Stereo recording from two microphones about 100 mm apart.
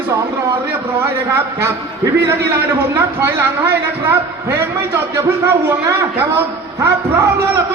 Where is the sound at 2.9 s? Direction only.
25° right (ahead or behind).